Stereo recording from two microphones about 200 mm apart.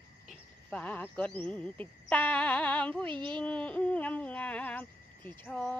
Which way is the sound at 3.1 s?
25° right (ahead or behind).